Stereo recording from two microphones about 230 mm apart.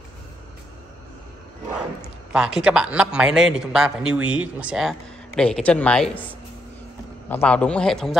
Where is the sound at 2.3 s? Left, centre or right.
Centre.